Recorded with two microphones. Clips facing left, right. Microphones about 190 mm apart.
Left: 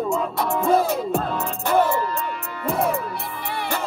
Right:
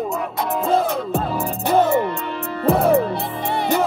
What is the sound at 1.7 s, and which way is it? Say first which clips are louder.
Music: right 3 dB; 20° right (ahead or behind).